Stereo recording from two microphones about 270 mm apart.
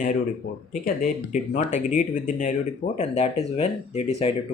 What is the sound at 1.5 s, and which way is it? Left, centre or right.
Speech, left.